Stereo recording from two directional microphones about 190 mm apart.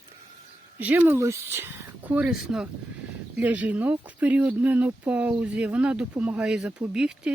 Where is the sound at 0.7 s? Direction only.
10° right (ahead or behind).